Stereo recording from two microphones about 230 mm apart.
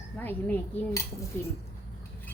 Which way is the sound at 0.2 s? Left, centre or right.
Centre.